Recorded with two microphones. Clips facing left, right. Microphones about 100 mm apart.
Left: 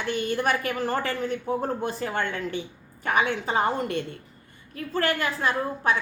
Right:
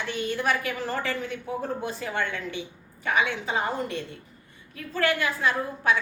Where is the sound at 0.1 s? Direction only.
45° left (ahead or behind).